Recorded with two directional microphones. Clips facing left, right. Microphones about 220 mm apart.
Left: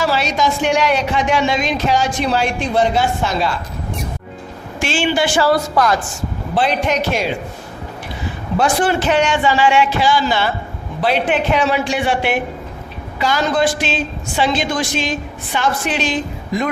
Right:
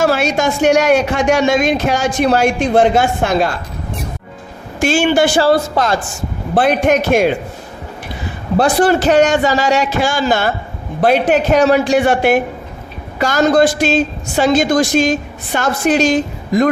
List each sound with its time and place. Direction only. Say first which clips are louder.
0.0 s a woman's voice: right 4 dB; 50° right (ahead or behind)
4.8 s a woman's voice: right 5 dB; 45° right (ahead or behind)
5.4 s speech: right 2 dB; 25° right (ahead or behind)
6.5 s a woman's voice: right 5 dB; 50° right (ahead or behind)
8.5 s a man's voice: right 4 dB; 35° right (ahead or behind)